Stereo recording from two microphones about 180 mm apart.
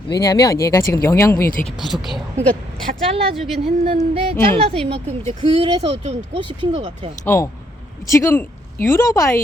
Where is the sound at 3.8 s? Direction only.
30° right (ahead or behind).